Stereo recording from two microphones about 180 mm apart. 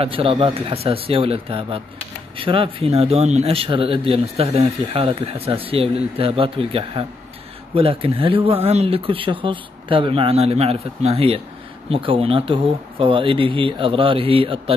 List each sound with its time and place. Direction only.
0.0 s speech: 30° right (ahead or behind)